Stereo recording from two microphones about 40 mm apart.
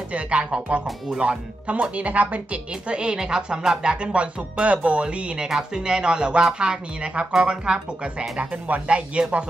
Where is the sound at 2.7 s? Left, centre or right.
Right.